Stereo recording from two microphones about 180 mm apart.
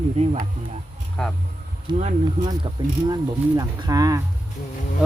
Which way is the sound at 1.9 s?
40° right (ahead or behind).